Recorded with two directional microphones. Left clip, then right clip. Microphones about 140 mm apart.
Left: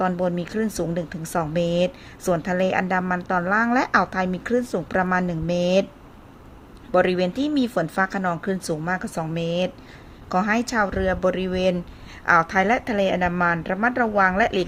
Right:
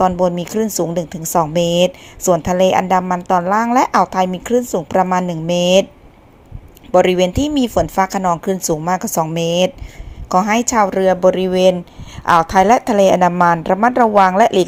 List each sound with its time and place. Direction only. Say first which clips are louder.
0.2 s speech: right 8 dB; 30° right (ahead or behind)
6.9 s speech: right 8 dB; 30° right (ahead or behind)